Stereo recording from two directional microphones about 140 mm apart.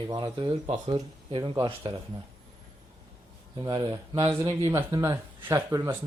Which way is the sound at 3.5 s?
30° right (ahead or behind).